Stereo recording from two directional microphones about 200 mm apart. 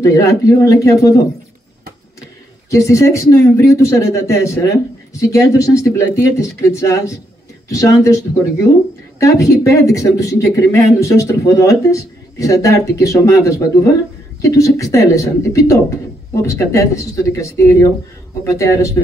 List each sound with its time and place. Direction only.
0.0 s speech: 15° left (ahead or behind)
2.7 s speech: 15° left (ahead or behind)
9.2 s speech: 15° left (ahead or behind)